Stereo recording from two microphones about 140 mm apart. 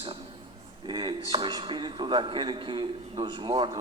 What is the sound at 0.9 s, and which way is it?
A man's voice, 35° right (ahead or behind).